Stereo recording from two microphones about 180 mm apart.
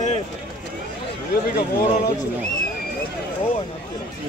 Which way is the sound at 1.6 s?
55° left (ahead or behind).